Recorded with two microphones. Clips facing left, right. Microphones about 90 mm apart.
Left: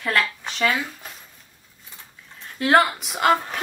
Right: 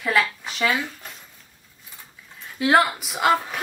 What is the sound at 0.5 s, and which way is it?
Speech, 5° right (ahead or behind).